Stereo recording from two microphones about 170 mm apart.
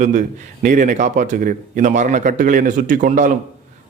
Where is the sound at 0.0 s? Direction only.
50° right (ahead or behind).